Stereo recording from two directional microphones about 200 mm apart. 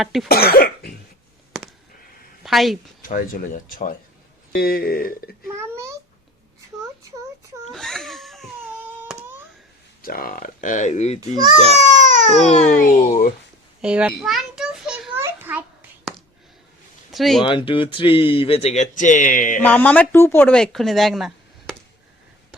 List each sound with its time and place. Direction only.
0.0 s speech: centre (ahead or behind)
0.3 s cough: 50° left (ahead or behind)
2.4 s a sound: centre (ahead or behind)
3.0 s speech: 45° left (ahead or behind)
5.5 s a sound: 15° right (ahead or behind)
7.7 s a sound: centre (ahead or behind)
10.0 s speech: 45° left (ahead or behind)
11.8 s baby cry: 40° right (ahead or behind)
12.5 s speech: 35° left (ahead or behind)
13.8 s a sound: 5° right (ahead or behind)
17.1 s speech: centre (ahead or behind)
17.4 s speech: 25° left (ahead or behind); by 19.6 s 40° left (ahead or behind)
19.6 s speech: 5° left (ahead or behind)